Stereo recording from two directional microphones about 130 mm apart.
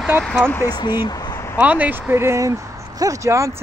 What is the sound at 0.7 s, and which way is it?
Speech, 30° left (ahead or behind).